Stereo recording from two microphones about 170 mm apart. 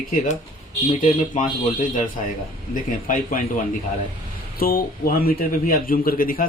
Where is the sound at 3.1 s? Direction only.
55° left (ahead or behind).